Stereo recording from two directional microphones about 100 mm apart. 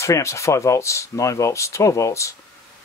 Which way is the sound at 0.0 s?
30° left (ahead or behind).